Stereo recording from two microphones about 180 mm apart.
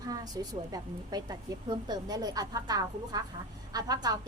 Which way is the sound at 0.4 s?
20° right (ahead or behind).